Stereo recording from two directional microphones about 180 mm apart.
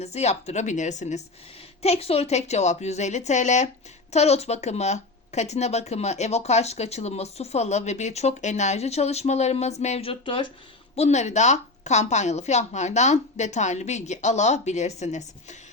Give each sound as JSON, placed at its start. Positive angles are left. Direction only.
{"t": 0.0, "sound": "speech", "side_deg": 35}